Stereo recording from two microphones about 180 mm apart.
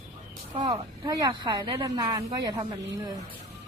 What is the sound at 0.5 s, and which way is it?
A woman's voice, 25° right (ahead or behind).